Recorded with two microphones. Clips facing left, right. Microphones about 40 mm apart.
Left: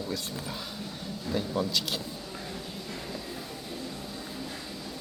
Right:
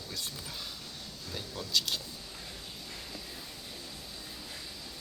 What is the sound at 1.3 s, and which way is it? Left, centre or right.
Speech, left.